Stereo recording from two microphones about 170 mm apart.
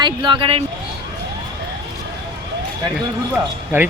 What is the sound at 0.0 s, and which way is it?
Speech, 25° right (ahead or behind).